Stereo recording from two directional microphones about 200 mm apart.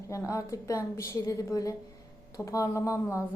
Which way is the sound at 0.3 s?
15° left (ahead or behind).